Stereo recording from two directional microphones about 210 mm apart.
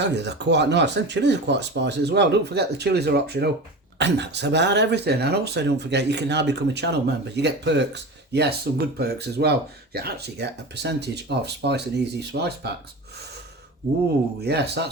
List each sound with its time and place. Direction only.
0.2 s speech: 55° right (ahead or behind)
14.4 s speech: 50° right (ahead or behind)